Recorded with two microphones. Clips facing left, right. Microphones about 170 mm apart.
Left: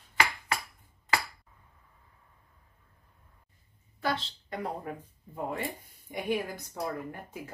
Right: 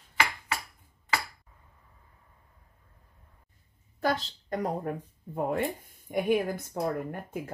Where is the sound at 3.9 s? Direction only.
40° right (ahead or behind).